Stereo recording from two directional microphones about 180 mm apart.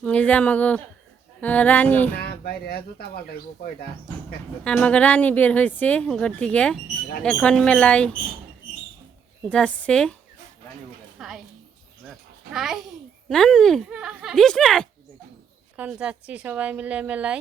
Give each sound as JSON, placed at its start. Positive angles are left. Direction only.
{"t": 0.0, "sound": "a woman's voice", "side_deg": 10}
{"t": 2.1, "sound": "speech", "side_deg": 60}
{"t": 4.6, "sound": "a woman's voice", "side_deg": 5}
{"t": 9.4, "sound": "speech", "side_deg": 5}
{"t": 11.2, "sound": "a woman's voice", "side_deg": 0}
{"t": 12.5, "sound": "a woman's voice", "side_deg": 0}